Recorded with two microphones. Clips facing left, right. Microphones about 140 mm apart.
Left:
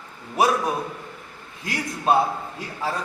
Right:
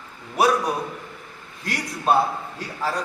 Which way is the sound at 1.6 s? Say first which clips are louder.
Even; centre (ahead or behind).